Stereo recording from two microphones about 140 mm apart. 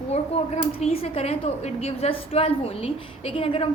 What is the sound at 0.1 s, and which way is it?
Speech, 50° left (ahead or behind).